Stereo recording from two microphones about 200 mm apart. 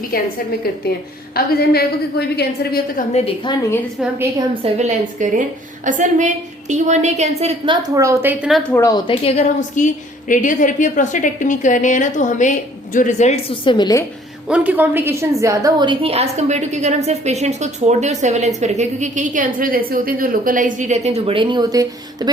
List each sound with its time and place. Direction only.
1.5 s a woman's voice: 50° left (ahead or behind)
3.1 s a woman's voice: 25° left (ahead or behind)
4.4 s a woman's voice: 30° right (ahead or behind); by 8.6 s 5° right (ahead or behind)
8.7 s a woman's voice: 15° left (ahead or behind)
9.2 s a woman's voice: 35° left (ahead or behind)
14.4 s a woman's voice: 5° right (ahead or behind)